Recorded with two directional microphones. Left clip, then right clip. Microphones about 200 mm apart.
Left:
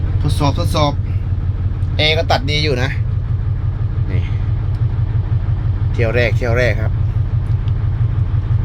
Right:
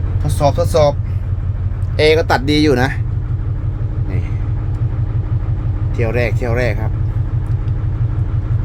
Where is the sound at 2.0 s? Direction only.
35° right (ahead or behind).